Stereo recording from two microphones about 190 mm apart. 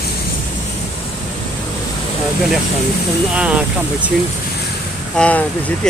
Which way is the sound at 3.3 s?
5° right (ahead or behind).